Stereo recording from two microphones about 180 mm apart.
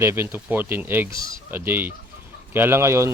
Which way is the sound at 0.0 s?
15° right (ahead or behind).